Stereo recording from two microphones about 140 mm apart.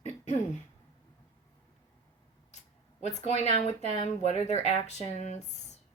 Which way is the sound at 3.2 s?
50° left (ahead or behind).